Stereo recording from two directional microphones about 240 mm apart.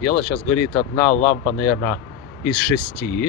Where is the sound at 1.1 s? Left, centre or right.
Left.